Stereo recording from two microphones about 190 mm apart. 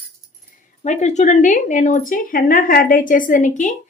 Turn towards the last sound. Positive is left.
turn(degrees=40)  # may be behind; listen again after turning